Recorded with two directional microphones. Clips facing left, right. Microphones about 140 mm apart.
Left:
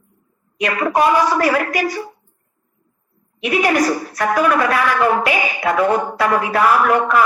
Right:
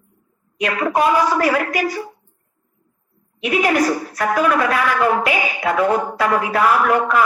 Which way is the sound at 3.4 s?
70° left (ahead or behind).